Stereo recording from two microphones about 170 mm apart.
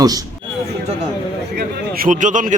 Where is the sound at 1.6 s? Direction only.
65° right (ahead or behind); by 2.5 s 50° right (ahead or behind).